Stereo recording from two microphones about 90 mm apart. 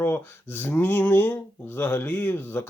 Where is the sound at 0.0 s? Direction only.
25° left (ahead or behind).